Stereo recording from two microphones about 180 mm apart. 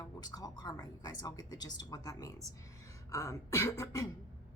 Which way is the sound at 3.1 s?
20° left (ahead or behind).